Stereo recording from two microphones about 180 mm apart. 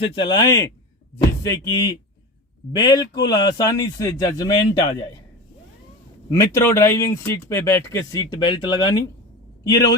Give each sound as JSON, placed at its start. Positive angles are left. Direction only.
{"t": 0.2, "sound": "speech", "side_deg": 25}
{"t": 6.3, "sound": "speech", "side_deg": 15}